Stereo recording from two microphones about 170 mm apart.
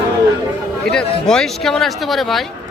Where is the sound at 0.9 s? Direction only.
5° left (ahead or behind).